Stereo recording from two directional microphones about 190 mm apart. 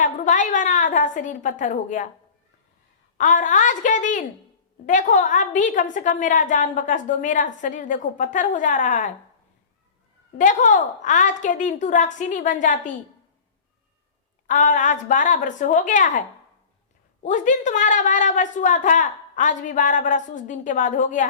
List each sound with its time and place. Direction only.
0.0 s a woman's voice: 40° left (ahead or behind)
3.2 s a woman's voice: 40° left (ahead or behind)
10.3 s a woman's voice: 40° left (ahead or behind)
14.4 s a woman's voice: 40° left (ahead or behind)
17.2 s a woman's voice: 40° left (ahead or behind)